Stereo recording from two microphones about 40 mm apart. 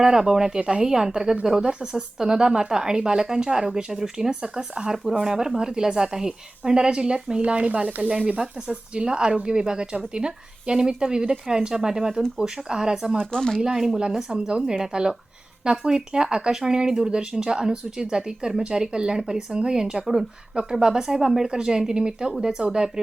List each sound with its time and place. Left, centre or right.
0.0 s speech: centre
0.9 s speech: centre
7.4 s speech: right
8.4 s speech: right
13.1 s speech: centre
13.6 s speech: centre
14.3 s speech: right